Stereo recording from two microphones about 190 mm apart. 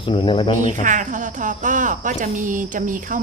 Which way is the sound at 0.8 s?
40° right (ahead or behind).